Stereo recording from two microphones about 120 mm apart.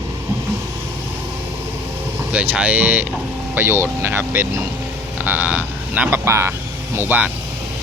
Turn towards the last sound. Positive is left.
turn(degrees=-15)  # may be behind; listen again after turning